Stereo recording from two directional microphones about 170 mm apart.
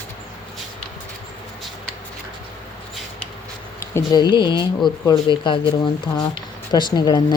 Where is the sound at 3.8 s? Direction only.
20° left (ahead or behind).